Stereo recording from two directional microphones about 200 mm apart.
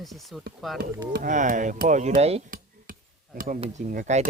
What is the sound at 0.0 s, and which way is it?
Speech, centre (ahead or behind).